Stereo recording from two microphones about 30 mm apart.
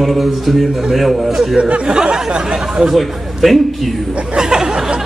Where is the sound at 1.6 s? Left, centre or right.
Right.